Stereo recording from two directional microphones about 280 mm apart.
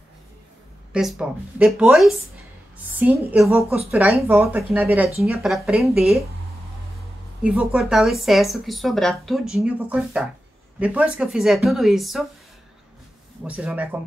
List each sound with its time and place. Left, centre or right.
0.9 s a woman's voice: centre
7.4 s a woman's voice: centre
13.4 s a woman's voice: centre